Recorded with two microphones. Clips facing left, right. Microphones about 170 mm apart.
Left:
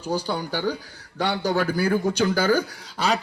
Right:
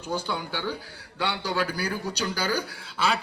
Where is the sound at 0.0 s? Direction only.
35° left (ahead or behind).